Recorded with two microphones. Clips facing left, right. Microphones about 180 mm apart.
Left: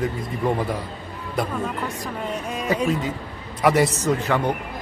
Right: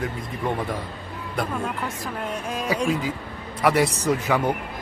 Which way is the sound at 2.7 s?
Centre (ahead or behind).